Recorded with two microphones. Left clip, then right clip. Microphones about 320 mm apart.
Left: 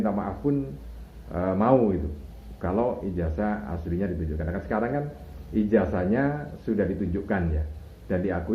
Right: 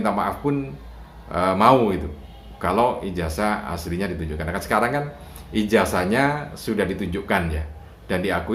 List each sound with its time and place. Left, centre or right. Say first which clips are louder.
0.0 s speech: right 6 dB; right